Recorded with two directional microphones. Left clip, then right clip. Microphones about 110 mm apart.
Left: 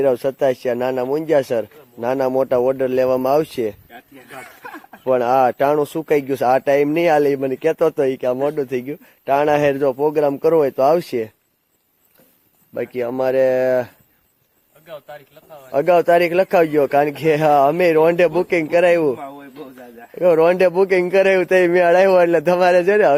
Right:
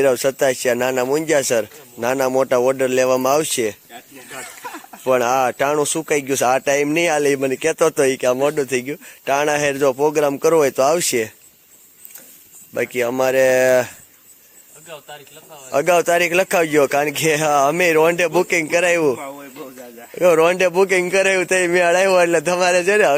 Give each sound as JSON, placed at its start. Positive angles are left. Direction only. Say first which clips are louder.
{"t": 0.0, "sound": "speech", "louder": "right 1 dB", "side_deg": 5}
{"t": 4.3, "sound": "snake", "louder": "right 3 dB", "side_deg": 30}
{"t": 5.0, "sound": "speech", "louder": "left 1 dB", "side_deg": 10}
{"t": 12.7, "sound": "a man's voice", "louder": "right 3 dB", "side_deg": 0}
{"t": 15.7, "sound": "a man's voice", "louder": "left 2 dB", "side_deg": 5}
{"t": 20.1, "sound": "a man's voice", "louder": "even", "side_deg": 10}